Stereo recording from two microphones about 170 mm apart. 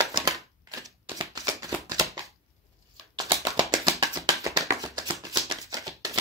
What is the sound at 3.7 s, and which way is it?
Music, 25° right (ahead or behind).